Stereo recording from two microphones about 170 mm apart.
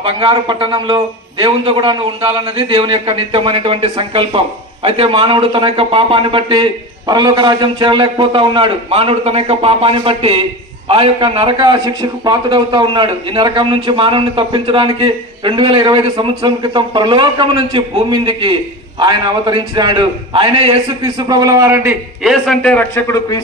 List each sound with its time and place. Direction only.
0.0 s a man's voice: 30° right (ahead or behind); by 23.2 s 15° left (ahead or behind)